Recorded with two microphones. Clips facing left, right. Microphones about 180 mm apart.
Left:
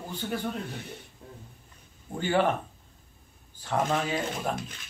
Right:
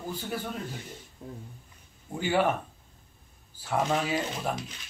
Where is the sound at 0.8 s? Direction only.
60° left (ahead or behind).